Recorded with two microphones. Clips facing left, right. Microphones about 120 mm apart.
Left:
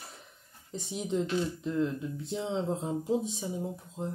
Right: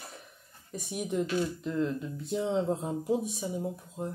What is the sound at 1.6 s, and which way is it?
Speech, 20° right (ahead or behind).